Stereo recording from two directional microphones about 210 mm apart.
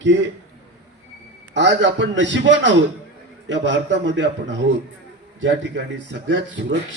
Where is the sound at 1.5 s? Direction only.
60° right (ahead or behind).